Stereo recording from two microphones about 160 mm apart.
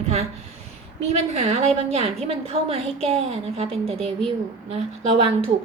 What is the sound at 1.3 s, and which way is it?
A woman's voice, 45° right (ahead or behind).